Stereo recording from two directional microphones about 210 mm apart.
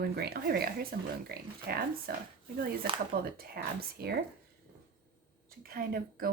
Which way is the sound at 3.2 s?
45° right (ahead or behind).